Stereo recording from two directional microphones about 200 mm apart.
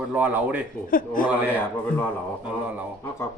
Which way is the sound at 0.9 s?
45° left (ahead or behind).